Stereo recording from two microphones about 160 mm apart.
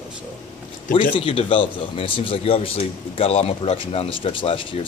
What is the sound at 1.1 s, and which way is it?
Speech, 35° left (ahead or behind).